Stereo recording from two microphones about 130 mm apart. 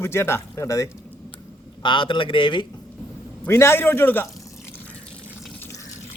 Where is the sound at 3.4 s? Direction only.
20° left (ahead or behind).